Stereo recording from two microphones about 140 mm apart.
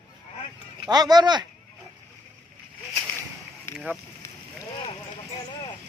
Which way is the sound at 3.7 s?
5° right (ahead or behind).